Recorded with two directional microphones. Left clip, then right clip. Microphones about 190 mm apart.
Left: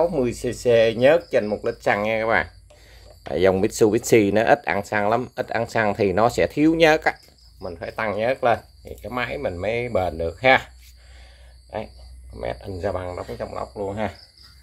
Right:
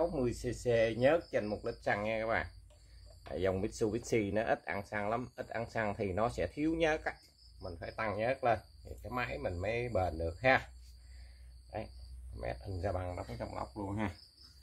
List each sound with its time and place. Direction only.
0.0 s speech: 20° left (ahead or behind)
7.6 s speech: 20° left (ahead or behind)
12.4 s speech: 15° left (ahead or behind)